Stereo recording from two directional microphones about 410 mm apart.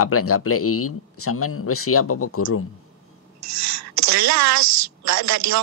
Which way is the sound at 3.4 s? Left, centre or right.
Right.